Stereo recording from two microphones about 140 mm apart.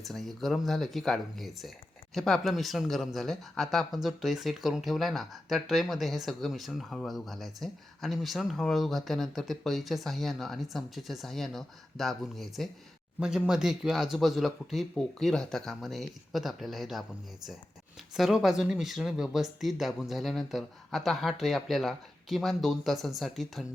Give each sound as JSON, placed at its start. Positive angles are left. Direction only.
{"t": 0.0, "sound": "speech", "side_deg": 0}
{"t": 18.1, "sound": "speech", "side_deg": 0}